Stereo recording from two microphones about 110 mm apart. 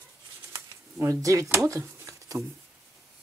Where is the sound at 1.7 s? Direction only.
30° right (ahead or behind).